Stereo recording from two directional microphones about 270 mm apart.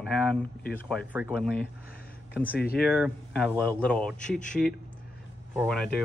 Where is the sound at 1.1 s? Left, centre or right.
Centre.